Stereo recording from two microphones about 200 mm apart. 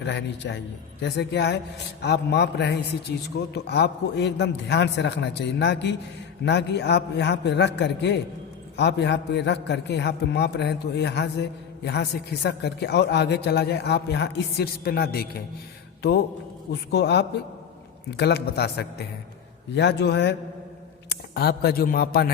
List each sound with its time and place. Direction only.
0.0 s a man's voice: 60° left (ahead or behind)
16.9 s a man's voice: 55° left (ahead or behind)
21.3 s a man's voice: 50° left (ahead or behind)